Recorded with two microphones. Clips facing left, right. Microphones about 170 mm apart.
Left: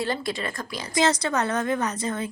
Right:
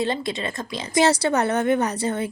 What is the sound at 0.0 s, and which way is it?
A woman's voice, 20° right (ahead or behind).